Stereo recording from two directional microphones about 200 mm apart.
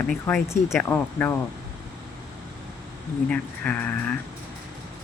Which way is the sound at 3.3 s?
10° left (ahead or behind).